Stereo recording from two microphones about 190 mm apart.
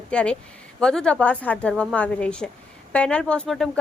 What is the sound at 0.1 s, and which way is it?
Speech, 5° left (ahead or behind).